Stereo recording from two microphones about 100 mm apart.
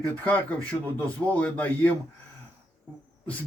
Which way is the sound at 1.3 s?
15° left (ahead or behind).